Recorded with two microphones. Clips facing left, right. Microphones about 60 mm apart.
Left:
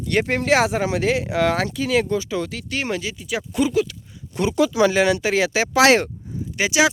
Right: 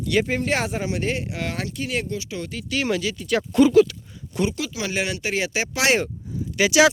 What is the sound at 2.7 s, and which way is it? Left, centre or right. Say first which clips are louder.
Speech: right 2 dB; left.